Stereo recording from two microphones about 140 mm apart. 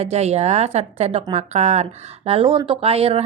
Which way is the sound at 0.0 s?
50° right (ahead or behind).